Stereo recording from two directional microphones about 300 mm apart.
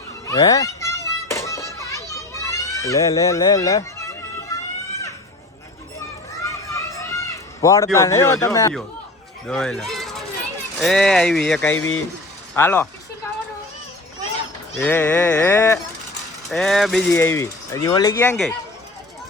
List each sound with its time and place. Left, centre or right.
0.3 s children playing: centre
6.4 s a sound: centre
9.5 s speech: centre
14.8 s speech: centre